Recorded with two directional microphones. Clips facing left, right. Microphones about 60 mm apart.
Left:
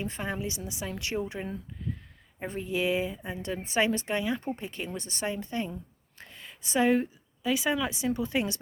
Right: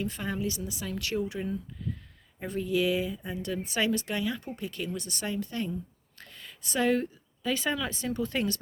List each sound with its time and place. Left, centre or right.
0.0 s a woman's voice: left